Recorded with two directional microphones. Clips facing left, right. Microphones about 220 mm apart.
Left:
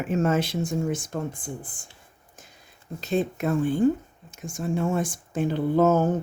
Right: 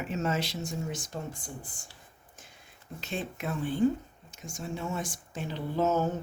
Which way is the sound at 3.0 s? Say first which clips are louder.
Left 10 dB; 40° left (ahead or behind).